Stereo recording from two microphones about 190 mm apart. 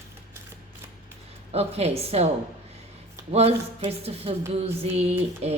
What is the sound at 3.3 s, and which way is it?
Speech, 30° right (ahead or behind).